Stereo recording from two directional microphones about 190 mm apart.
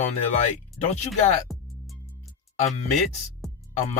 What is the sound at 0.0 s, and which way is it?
Speech, 40° left (ahead or behind).